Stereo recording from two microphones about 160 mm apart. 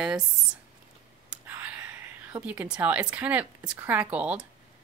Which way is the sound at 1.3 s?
10° right (ahead or behind).